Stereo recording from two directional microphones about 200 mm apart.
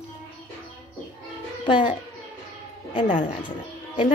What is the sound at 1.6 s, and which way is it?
Speech, 25° left (ahead or behind).